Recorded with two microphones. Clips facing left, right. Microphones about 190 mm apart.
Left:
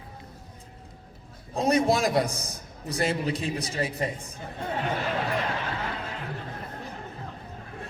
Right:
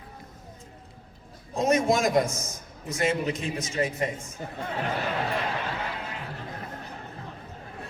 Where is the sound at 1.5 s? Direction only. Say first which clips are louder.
Even; 35° left (ahead or behind).